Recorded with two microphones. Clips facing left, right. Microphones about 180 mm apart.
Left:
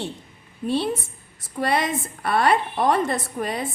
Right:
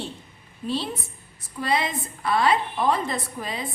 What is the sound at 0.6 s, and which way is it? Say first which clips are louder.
A woman's voice: left 5 dB; 60° left (ahead or behind).